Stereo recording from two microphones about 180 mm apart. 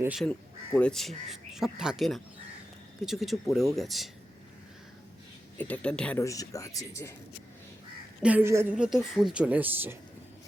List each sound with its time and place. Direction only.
0.0 s speech: 5° right (ahead or behind)
0.3 s speech: 5° left (ahead or behind)
5.5 s speech: 10° left (ahead or behind)
6.2 s speech: 20° left (ahead or behind)
8.2 s speech: 10° right (ahead or behind)